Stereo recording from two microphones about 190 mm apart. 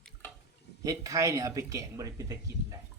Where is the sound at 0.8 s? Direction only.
15° right (ahead or behind).